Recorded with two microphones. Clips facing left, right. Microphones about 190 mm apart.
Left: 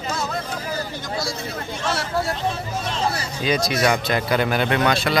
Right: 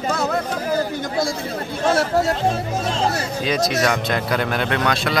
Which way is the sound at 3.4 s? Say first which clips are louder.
Even; centre (ahead or behind).